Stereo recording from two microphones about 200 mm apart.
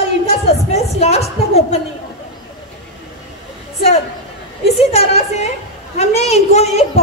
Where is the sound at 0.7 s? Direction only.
30° left (ahead or behind).